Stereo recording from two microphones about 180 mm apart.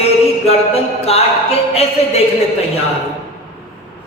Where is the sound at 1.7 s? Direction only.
35° left (ahead or behind).